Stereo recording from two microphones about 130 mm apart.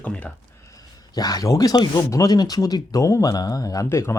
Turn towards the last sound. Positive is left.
turn(degrees=20)  # may be behind; listen again after turning